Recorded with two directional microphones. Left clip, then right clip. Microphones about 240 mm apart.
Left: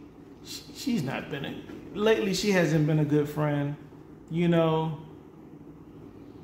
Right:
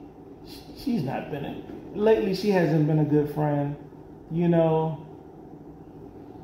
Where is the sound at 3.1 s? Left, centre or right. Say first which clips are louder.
Right 3 dB; centre.